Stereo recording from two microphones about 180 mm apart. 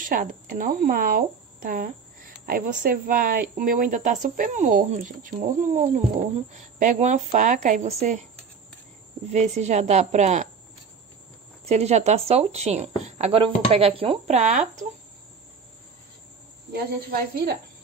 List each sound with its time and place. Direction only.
0.0 s speech: 50° right (ahead or behind)
9.3 s speech: 40° right (ahead or behind)
11.6 s speech: 35° right (ahead or behind)
16.7 s speech: 60° right (ahead or behind)